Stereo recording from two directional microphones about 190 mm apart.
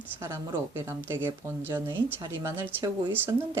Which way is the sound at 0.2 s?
10° right (ahead or behind).